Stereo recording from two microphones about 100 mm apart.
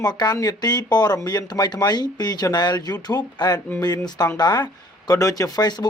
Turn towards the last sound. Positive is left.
turn(degrees=45)  # may be behind; listen again after turning